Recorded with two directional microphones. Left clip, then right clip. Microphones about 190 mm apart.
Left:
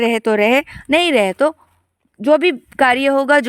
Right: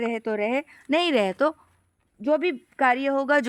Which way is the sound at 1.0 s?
25° left (ahead or behind).